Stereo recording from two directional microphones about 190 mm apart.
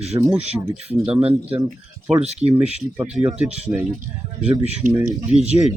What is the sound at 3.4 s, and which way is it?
Speech, 35° right (ahead or behind).